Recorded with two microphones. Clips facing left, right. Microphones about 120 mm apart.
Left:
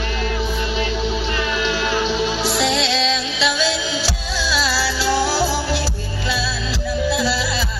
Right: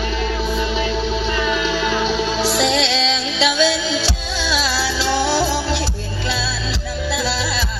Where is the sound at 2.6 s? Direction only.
25° right (ahead or behind).